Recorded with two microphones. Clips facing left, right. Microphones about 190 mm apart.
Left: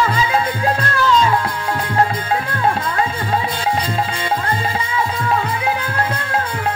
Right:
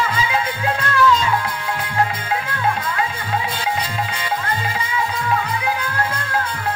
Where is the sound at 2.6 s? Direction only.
40° left (ahead or behind).